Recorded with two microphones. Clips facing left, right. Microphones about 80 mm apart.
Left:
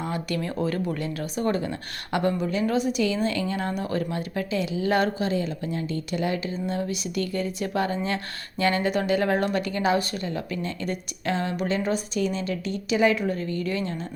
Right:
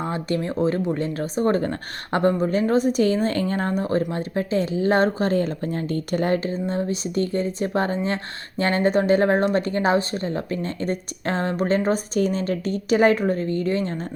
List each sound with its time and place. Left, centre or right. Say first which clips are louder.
0.0 s speech: right 4 dB; right
5.3 s speech: right 4 dB; right